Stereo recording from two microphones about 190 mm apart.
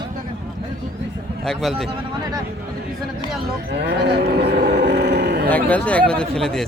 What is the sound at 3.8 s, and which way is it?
Cattle, 60° right (ahead or behind).